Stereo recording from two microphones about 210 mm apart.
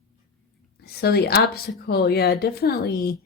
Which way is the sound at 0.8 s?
50° left (ahead or behind).